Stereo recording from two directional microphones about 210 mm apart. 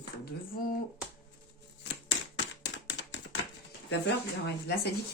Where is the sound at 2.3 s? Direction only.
60° left (ahead or behind).